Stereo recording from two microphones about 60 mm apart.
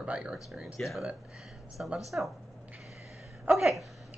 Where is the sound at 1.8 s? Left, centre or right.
Right.